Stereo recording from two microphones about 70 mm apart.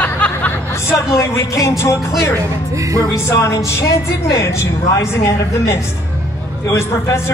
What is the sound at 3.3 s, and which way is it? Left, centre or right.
Speech, left.